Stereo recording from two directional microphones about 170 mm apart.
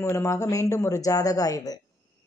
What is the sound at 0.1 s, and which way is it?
A woman's voice, 20° left (ahead or behind).